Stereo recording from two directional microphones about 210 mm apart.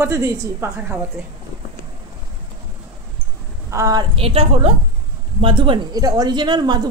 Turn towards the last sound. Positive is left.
turn(degrees=-20)  # may be behind; listen again after turning